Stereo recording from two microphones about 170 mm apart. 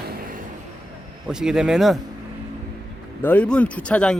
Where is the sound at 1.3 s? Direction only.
5° right (ahead or behind).